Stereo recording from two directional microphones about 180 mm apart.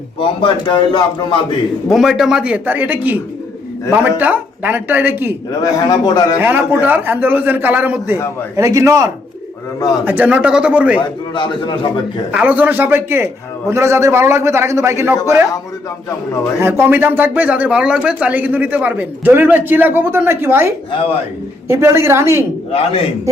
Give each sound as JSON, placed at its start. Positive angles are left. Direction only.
{"t": 0.2, "sound": "a man's voice", "side_deg": 30}
{"t": 1.9, "sound": "speech", "side_deg": 0}
{"t": 5.5, "sound": "a man's voice", "side_deg": 20}
{"t": 6.4, "sound": "speech", "side_deg": -10}
{"t": 10.1, "sound": "speech", "side_deg": -10}
{"t": 11.3, "sound": "a man's voice", "side_deg": 25}
{"t": 12.3, "sound": "speech", "side_deg": -10}
{"t": 16.6, "sound": "speech", "side_deg": -15}
{"t": 22.7, "sound": "a man's voice", "side_deg": 30}